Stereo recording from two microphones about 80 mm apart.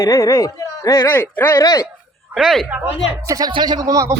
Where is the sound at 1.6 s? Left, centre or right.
Left.